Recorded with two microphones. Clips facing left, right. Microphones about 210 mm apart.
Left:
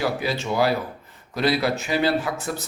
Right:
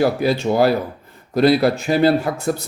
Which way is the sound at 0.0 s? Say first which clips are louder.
Right 8 dB; 50° right (ahead or behind).